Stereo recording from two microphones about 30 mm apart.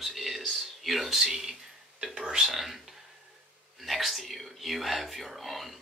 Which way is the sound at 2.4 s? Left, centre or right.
Centre.